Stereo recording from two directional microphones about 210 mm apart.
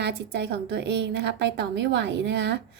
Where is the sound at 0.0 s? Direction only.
55° right (ahead or behind).